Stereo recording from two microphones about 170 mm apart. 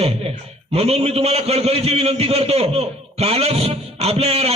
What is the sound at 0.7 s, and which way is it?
A man's voice, 35° right (ahead or behind).